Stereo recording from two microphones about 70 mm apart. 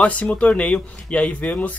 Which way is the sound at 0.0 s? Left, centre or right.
Centre.